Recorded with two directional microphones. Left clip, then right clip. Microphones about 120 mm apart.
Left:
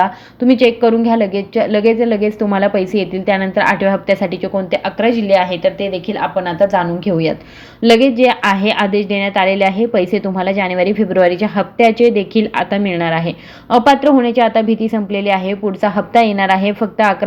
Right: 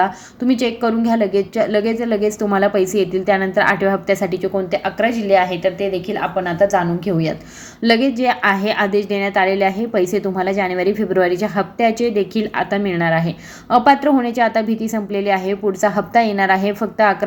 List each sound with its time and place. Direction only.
0.0 s a woman's voice: 35° left (ahead or behind)
4.9 s a woman's voice: 65° left (ahead or behind)
6.1 s a woman's voice: 90° left
7.8 s a woman's voice: 35° left (ahead or behind)